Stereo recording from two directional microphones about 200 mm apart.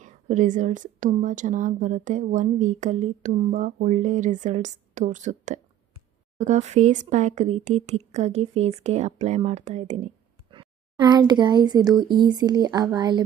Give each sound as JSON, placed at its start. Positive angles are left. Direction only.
{"t": 0.0, "sound": "a woman's voice", "side_deg": -40}
{"t": 10.5, "sound": "speech", "side_deg": -25}